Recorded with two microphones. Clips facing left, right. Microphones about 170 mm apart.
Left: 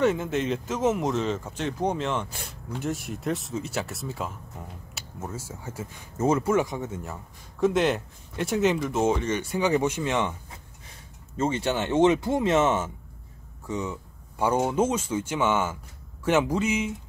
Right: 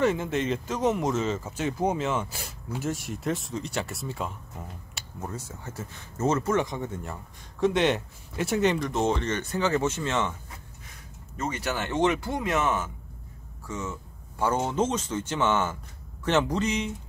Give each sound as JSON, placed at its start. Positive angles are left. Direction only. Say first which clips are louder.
{"t": 0.0, "sound": "speech", "louder": "left 1 dB", "side_deg": 0}
{"t": 11.3, "sound": "speech", "louder": "left 5 dB", "side_deg": 25}